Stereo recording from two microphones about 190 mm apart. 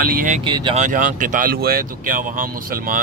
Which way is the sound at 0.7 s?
40° right (ahead or behind).